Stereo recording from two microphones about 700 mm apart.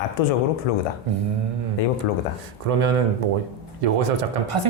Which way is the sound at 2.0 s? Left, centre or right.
Left.